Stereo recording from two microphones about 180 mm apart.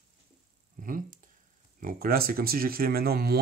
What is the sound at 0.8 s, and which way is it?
Speech, 50° right (ahead or behind).